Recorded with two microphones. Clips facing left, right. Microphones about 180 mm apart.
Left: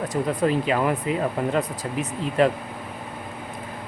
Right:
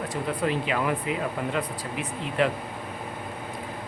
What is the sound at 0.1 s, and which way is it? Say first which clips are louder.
Speech: left 5 dB; 40° left (ahead or behind).